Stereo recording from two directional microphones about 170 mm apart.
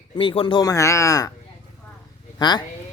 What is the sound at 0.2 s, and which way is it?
Speech, 30° left (ahead or behind).